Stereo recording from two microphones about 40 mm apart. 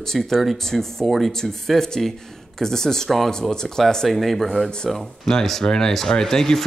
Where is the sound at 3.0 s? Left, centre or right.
Centre.